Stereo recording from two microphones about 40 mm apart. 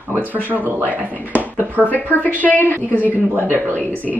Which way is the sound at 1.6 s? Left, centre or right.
Right.